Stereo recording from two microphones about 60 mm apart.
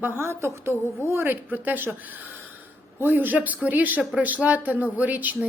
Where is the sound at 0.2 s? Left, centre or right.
Right.